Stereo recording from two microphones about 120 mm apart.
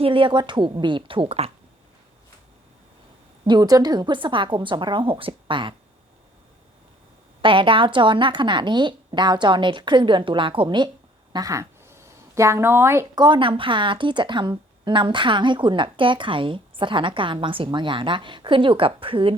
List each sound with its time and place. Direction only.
0.0 s speech: 45° right (ahead or behind)
3.4 s speech: 35° right (ahead or behind)
7.4 s speech: 45° right (ahead or behind)
11.3 s a sound: 30° right (ahead or behind)
13.1 s a woman's voice: 40° right (ahead or behind)